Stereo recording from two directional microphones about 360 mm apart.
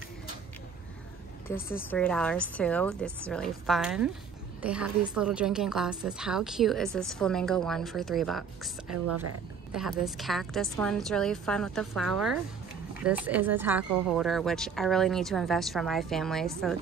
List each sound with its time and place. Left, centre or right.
1.5 s a woman's voice: centre
8.9 s speech: right
9.8 s a woman's voice: centre